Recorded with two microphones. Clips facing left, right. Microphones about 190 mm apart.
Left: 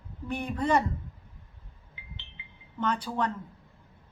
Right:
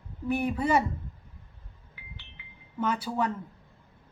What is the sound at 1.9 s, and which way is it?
Wind chime, 20° left (ahead or behind).